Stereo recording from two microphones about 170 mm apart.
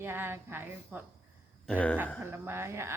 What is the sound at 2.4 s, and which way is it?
Speech, 15° right (ahead or behind).